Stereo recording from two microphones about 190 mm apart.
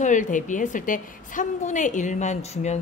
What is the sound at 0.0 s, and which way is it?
A woman's voice, 40° left (ahead or behind).